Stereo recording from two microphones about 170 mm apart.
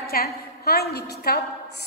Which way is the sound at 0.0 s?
65° left (ahead or behind).